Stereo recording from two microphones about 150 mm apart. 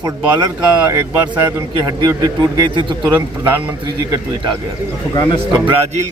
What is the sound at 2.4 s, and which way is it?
Speech, 30° right (ahead or behind).